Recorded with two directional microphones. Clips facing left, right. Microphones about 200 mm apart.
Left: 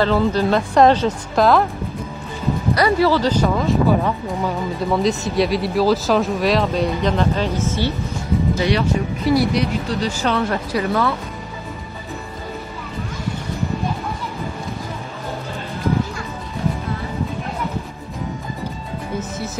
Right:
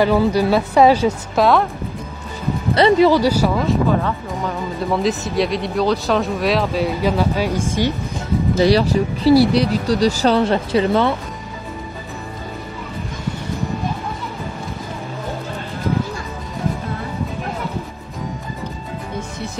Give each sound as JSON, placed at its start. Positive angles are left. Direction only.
{"t": 0.0, "sound": "speech", "side_deg": -10}
{"t": 2.7, "sound": "speech", "side_deg": -25}
{"t": 3.1, "sound": "speech", "side_deg": -10}
{"t": 4.9, "sound": "speech", "side_deg": 0}
{"t": 8.5, "sound": "speech", "side_deg": -35}